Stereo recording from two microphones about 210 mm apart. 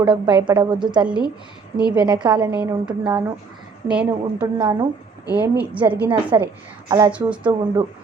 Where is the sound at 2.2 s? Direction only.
20° right (ahead or behind).